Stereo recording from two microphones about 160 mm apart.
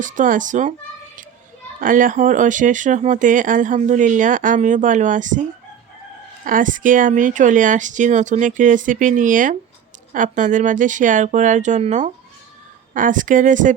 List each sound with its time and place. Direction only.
0.0 s speech: 55° right (ahead or behind)
1.8 s speech: 60° right (ahead or behind)